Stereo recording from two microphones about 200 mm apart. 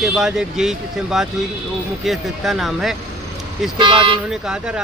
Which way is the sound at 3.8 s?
25° right (ahead or behind).